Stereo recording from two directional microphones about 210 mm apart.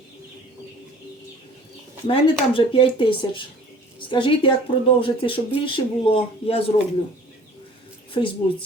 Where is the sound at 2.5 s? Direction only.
25° left (ahead or behind).